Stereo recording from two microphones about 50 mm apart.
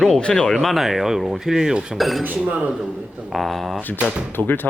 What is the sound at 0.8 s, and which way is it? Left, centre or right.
Speech, centre.